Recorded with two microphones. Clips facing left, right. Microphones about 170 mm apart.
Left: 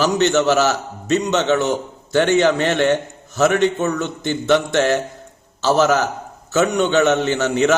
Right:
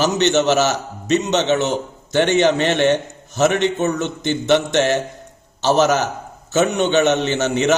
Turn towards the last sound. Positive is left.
turn(degrees=-20)  # may be behind; listen again after turning